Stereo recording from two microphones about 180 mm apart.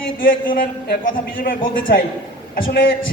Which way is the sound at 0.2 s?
50° left (ahead or behind).